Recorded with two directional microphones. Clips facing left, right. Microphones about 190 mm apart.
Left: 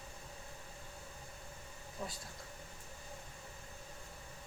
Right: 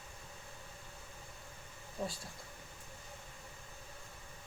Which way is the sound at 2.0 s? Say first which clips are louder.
Right 4 dB; 30° right (ahead or behind).